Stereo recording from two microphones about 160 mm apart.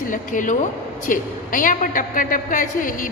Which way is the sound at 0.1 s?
55° left (ahead or behind).